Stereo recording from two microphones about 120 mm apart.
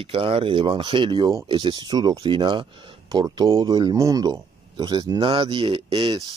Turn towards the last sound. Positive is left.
turn(degrees=-45)  # may be behind; listen again after turning